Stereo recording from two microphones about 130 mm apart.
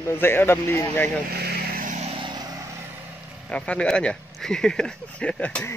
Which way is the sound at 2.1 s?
35° right (ahead or behind).